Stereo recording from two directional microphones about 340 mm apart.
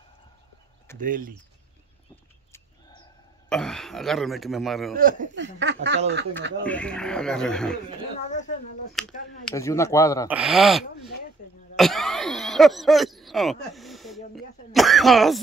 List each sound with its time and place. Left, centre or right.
0.9 s speech: right
3.4 s speech: centre
4.9 s speech: right
6.6 s speech: centre
8.3 s speech: left
9.0 s speech: centre
10.2 s speech: centre